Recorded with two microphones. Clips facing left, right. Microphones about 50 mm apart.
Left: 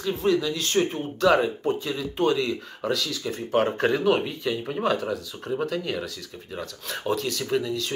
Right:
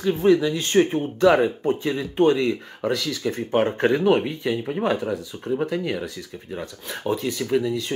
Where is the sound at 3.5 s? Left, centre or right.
Right.